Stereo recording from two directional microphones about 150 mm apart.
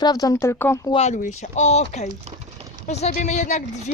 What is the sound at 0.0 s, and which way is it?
Speech, 25° left (ahead or behind).